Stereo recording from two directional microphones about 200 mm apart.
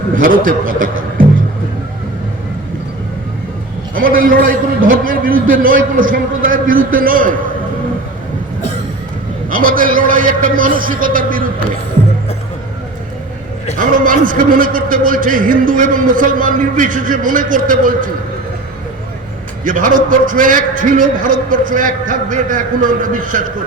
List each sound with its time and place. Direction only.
0.2 s a man's voice: 45° right (ahead or behind)
3.9 s a man's voice: 45° right (ahead or behind)
9.5 s a man's voice: 45° right (ahead or behind)
13.7 s a man's voice: 45° right (ahead or behind)
19.6 s a man's voice: 40° right (ahead or behind)